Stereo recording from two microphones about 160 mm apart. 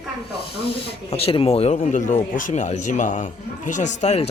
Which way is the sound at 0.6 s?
35° left (ahead or behind).